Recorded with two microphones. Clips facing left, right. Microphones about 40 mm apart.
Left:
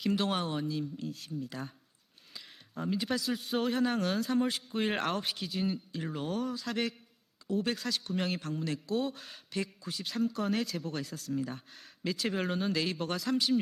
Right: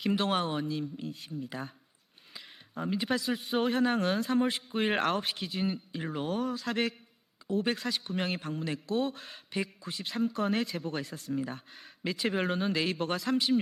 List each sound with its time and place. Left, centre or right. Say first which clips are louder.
0.0 s speech: right 2 dB; centre